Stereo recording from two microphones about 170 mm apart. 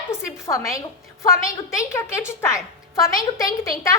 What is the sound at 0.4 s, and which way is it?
Speech, 20° left (ahead or behind).